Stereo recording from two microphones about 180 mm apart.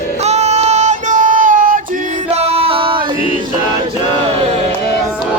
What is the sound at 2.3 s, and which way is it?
Music, 35° right (ahead or behind).